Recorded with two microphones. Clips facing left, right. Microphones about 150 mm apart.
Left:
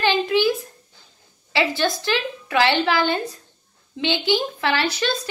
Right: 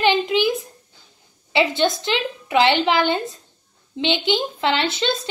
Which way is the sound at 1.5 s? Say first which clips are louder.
Right 3 dB; 20° right (ahead or behind).